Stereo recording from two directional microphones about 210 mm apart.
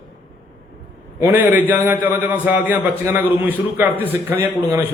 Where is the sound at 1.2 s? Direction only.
10° right (ahead or behind).